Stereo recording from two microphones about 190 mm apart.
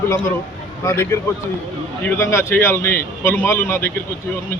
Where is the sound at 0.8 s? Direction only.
15° left (ahead or behind).